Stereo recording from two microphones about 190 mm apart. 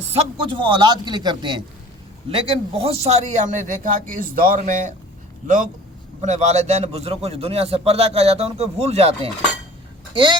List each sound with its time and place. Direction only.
0.1 s a man's voice: 25° right (ahead or behind); by 4.9 s 40° right (ahead or behind)
6.2 s a man's voice: 35° right (ahead or behind)